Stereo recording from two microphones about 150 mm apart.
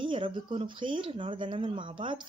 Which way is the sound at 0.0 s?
35° right (ahead or behind).